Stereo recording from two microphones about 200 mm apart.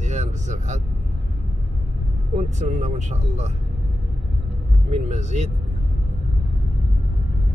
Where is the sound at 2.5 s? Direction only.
35° right (ahead or behind).